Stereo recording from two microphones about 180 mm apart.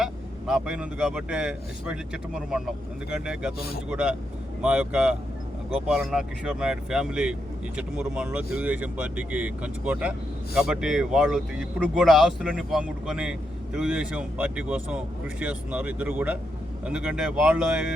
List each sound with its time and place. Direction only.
0.0 s speech: 5° right (ahead or behind)